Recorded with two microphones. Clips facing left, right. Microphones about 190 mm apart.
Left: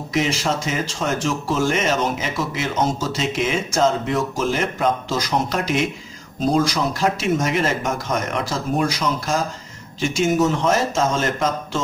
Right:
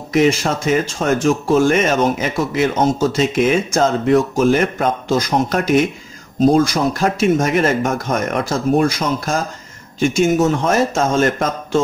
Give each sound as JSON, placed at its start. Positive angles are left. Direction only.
{"t": 0.1, "sound": "speech", "side_deg": -55}